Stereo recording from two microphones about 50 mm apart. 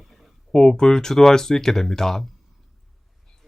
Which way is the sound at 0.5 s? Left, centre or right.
Centre.